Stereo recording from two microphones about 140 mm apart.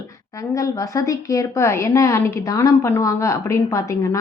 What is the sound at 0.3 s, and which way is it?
A woman's voice, 25° left (ahead or behind).